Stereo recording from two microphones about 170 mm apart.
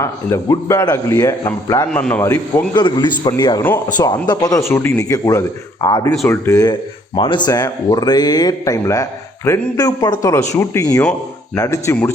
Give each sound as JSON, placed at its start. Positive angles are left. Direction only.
{"t": 0.0, "sound": "speech", "side_deg": 15}
{"t": 1.9, "sound": "speech", "side_deg": 5}
{"t": 2.7, "sound": "speech", "side_deg": 25}